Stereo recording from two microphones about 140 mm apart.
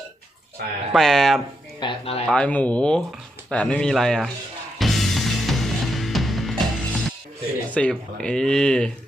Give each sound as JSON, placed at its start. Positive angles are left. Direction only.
{"t": 0.9, "sound": "speech", "side_deg": 0}
{"t": 1.8, "sound": "speech", "side_deg": 40}
{"t": 2.3, "sound": "speech", "side_deg": 10}
{"t": 4.8, "sound": "music", "side_deg": 0}
{"t": 7.7, "sound": "speech", "side_deg": 10}